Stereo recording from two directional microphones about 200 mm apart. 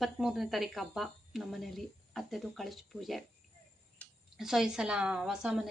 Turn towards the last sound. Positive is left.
turn(degrees=-5)  # may be behind; listen again after turning